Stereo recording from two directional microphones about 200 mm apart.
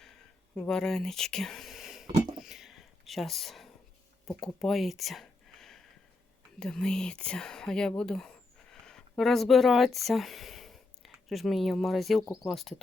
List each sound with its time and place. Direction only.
0.6 s speech: 5° left (ahead or behind)
2.4 s a sound: centre (ahead or behind)
6.6 s speech: 5° left (ahead or behind)
12.2 s speech: 15° left (ahead or behind)
12.5 s speech: centre (ahead or behind)